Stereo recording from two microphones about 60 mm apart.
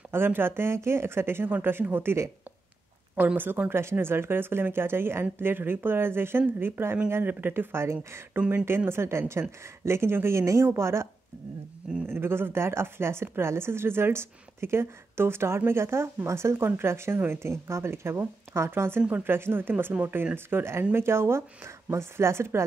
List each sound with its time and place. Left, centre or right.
0.1 s speech: right
3.3 s speech: right
12.1 s speech: right